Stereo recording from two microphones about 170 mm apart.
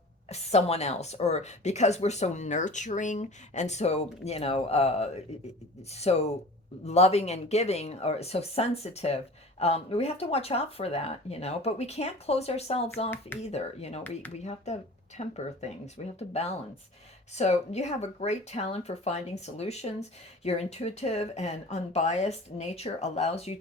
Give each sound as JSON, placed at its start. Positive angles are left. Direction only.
{"t": 0.3, "sound": "speech", "side_deg": 40}